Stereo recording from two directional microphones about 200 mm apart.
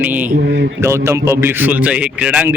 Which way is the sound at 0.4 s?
60° right (ahead or behind).